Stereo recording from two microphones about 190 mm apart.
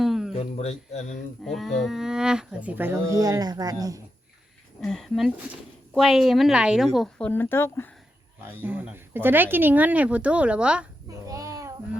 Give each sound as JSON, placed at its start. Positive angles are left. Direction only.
{"t": 0.0, "sound": "music", "side_deg": 0}
{"t": 0.3, "sound": "a sound", "side_deg": 35}
{"t": 1.1, "sound": "speech", "side_deg": 0}
{"t": 4.8, "sound": "a woman's voice", "side_deg": 0}
{"t": 8.4, "sound": "speech", "side_deg": -10}
{"t": 11.3, "sound": "child singing", "side_deg": -15}